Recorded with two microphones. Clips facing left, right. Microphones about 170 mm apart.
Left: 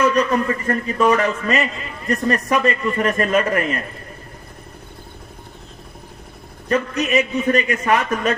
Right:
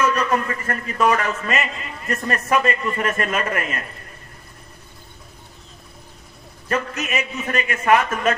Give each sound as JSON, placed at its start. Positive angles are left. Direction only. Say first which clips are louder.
{"t": 0.1, "sound": "a man's voice", "louder": "left 3 dB", "side_deg": 35}
{"t": 6.9, "sound": "a man's voice", "louder": "left 7 dB", "side_deg": 35}